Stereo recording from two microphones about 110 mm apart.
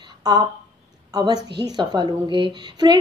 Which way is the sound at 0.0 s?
40° right (ahead or behind).